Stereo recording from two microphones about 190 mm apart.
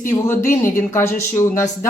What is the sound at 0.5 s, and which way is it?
Speech, 15° left (ahead or behind).